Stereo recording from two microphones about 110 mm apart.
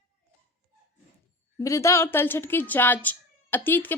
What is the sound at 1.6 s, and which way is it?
Speech, 25° left (ahead or behind).